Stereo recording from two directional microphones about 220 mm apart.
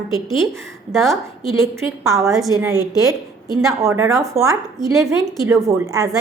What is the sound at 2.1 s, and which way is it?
A woman's voice, 15° right (ahead or behind).